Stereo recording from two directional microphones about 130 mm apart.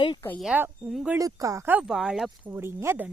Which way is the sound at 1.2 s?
25° right (ahead or behind).